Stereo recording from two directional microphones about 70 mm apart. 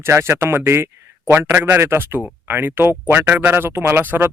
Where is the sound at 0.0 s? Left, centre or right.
Right.